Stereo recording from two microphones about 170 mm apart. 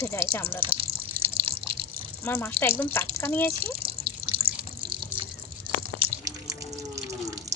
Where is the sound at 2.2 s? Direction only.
15° left (ahead or behind).